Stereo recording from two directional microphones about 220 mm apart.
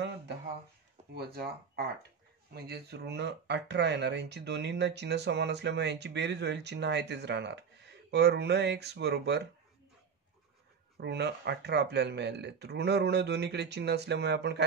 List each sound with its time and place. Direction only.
1.1 s speech: 45° right (ahead or behind)
11.0 s speech: 50° right (ahead or behind)